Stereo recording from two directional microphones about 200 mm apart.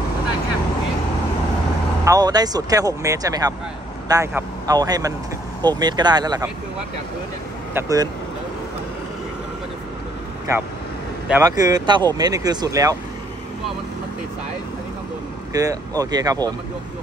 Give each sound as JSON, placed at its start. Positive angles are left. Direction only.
{"t": 2.0, "sound": "speech", "side_deg": -20}
{"t": 7.7, "sound": "speech", "side_deg": -20}
{"t": 11.4, "sound": "speech", "side_deg": -20}
{"t": 15.5, "sound": "speech", "side_deg": -15}